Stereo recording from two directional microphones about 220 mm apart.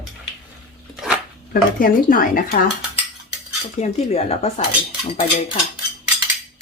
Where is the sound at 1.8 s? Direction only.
40° left (ahead or behind).